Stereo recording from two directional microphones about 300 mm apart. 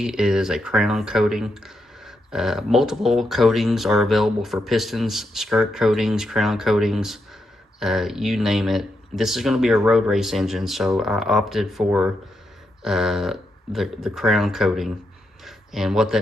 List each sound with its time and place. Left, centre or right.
0.0 s speech: centre